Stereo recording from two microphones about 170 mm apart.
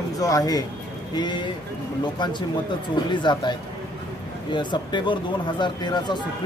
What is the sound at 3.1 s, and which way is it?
A man's voice, 25° left (ahead or behind).